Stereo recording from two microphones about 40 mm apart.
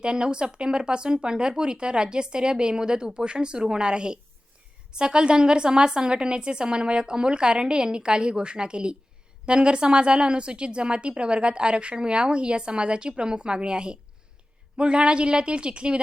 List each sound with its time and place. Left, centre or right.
0.0 s a woman's voice: right